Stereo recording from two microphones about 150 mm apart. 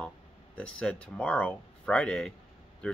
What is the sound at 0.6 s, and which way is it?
Speech, 5° left (ahead or behind).